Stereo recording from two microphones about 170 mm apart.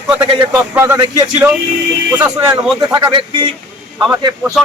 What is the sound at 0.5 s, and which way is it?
Speech, 15° right (ahead or behind).